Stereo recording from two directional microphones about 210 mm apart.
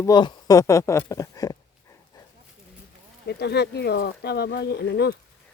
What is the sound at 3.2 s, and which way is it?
Speech, 50° left (ahead or behind).